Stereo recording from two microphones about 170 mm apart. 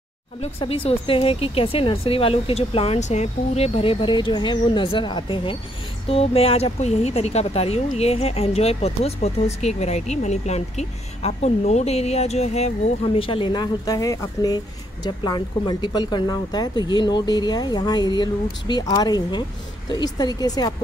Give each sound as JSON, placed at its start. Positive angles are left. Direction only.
{"t": 0.4, "sound": "speech", "side_deg": 35}